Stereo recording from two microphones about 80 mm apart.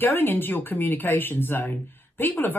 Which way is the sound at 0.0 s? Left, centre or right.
Left.